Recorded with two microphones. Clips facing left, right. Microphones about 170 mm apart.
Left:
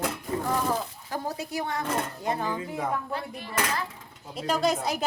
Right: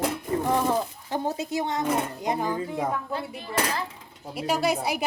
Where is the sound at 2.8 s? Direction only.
30° right (ahead or behind).